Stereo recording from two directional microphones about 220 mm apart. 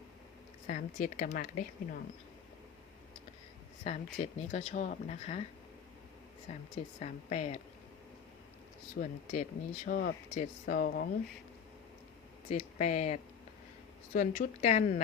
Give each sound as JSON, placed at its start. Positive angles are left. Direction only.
{"t": 0.7, "sound": "speech", "side_deg": 35}
{"t": 3.8, "sound": "speech", "side_deg": 30}
{"t": 6.5, "sound": "speech", "side_deg": 25}
{"t": 9.0, "sound": "speech", "side_deg": 35}
{"t": 12.5, "sound": "speech", "side_deg": 30}